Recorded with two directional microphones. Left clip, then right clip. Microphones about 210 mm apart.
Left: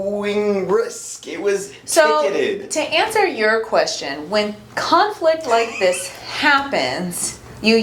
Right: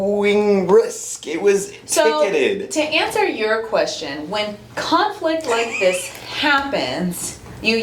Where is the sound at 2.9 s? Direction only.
40° left (ahead or behind).